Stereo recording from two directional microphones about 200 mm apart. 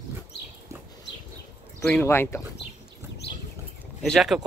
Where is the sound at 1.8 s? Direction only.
10° left (ahead or behind).